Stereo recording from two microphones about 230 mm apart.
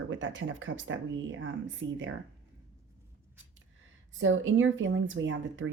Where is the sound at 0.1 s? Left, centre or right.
Right.